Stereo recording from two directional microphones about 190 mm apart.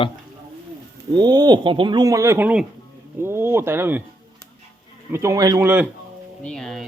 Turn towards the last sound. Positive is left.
turn(degrees=0)  # may be behind; listen again after turning